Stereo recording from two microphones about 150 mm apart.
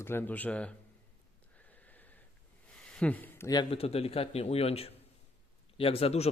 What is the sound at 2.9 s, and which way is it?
Speech, 10° left (ahead or behind).